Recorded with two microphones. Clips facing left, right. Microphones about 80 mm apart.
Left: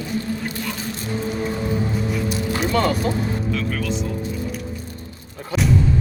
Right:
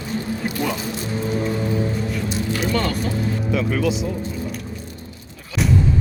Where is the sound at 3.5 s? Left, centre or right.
Centre.